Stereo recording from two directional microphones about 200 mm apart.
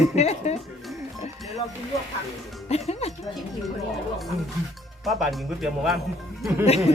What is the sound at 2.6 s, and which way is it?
Speech, 30° left (ahead or behind).